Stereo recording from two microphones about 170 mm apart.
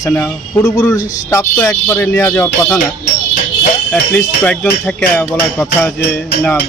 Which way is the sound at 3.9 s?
10° left (ahead or behind).